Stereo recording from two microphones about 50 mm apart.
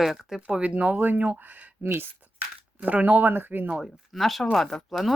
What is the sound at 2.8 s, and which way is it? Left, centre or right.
Speech, right.